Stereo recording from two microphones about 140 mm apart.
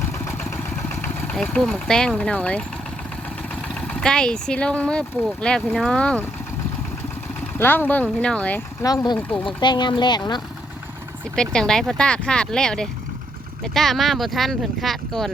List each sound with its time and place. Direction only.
1.0 s vehicle: 10° left (ahead or behind)
1.7 s speech: 5° left (ahead or behind)
7.6 s speech: 15° left (ahead or behind)
8.8 s speech: 25° left (ahead or behind)
11.3 s speech: 5° left (ahead or behind)